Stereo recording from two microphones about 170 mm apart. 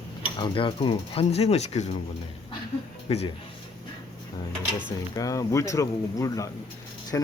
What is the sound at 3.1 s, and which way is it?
Mechanisms, 35° left (ahead or behind).